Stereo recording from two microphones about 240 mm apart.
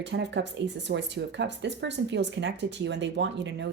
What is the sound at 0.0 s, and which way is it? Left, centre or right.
Speech, right.